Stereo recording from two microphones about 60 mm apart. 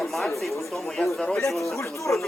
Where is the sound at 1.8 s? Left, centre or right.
Left.